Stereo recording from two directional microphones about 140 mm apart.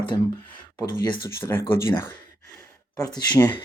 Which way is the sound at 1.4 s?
15° left (ahead or behind).